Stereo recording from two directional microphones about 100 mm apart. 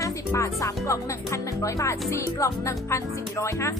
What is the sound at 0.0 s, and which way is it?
Music, 30° left (ahead or behind).